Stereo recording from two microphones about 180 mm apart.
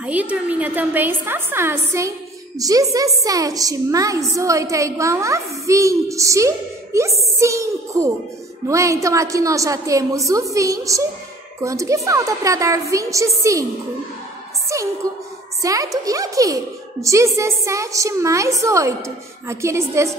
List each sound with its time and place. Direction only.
0.0 s a woman's voice: 10° right (ahead or behind)
14.7 s a sound: 15° right (ahead or behind)
15.6 s a woman's voice: 20° right (ahead or behind)